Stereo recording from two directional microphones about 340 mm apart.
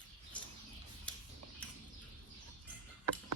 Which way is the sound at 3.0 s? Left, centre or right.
Right.